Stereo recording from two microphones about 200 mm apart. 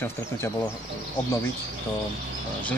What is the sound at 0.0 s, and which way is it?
Speech, 10° left (ahead or behind).